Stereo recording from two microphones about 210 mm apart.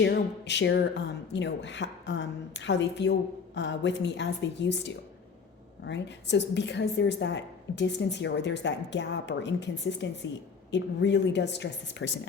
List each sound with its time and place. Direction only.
0.0 s a woman's voice: 55° left (ahead or behind)